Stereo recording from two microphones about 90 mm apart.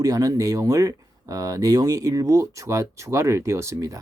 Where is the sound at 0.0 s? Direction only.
40° right (ahead or behind).